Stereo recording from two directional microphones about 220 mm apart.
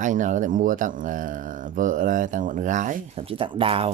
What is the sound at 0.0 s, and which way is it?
Speech, 35° right (ahead or behind).